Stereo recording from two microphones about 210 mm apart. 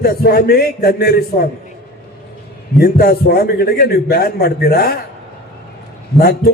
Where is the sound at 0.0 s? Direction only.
50° left (ahead or behind).